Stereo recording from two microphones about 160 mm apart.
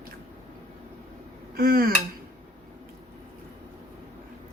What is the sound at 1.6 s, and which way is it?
Dishes, 70° right (ahead or behind).